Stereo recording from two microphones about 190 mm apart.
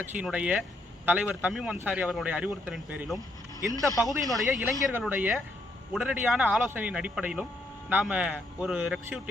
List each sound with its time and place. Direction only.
0.1 s speech: 5° right (ahead or behind)
3.2 s a sound: 20° right (ahead or behind)
4.0 s speech: centre (ahead or behind)